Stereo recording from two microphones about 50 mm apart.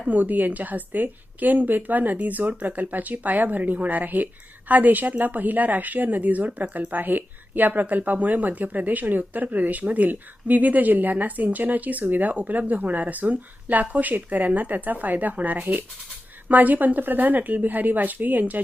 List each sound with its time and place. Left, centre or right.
0.1 s speech: right